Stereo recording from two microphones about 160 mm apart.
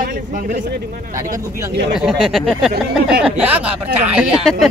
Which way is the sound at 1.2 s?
20° right (ahead or behind).